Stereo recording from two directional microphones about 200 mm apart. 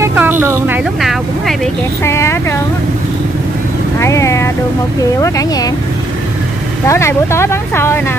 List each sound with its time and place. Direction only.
0.0 s a sound: 10° right (ahead or behind)
2.0 s speech: 15° left (ahead or behind)
4.0 s vehicle: 15° left (ahead or behind)
5.2 s speech: 15° left (ahead or behind)
6.9 s speech: 15° left (ahead or behind)